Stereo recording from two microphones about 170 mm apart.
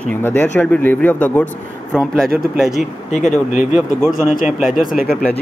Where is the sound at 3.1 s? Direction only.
45° left (ahead or behind).